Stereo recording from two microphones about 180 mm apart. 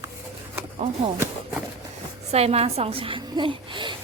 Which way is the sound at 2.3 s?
35° right (ahead or behind).